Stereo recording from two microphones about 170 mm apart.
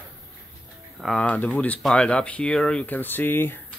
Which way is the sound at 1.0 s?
5° left (ahead or behind).